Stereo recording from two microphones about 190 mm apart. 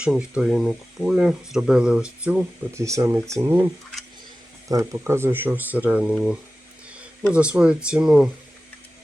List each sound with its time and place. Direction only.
0.0 s speech: 5° right (ahead or behind)
2.8 s speech: 15° right (ahead or behind)
4.7 s speech: 15° right (ahead or behind)
7.5 s speech: 5° right (ahead or behind)